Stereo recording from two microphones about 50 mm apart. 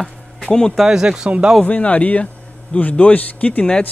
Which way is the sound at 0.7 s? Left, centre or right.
Centre.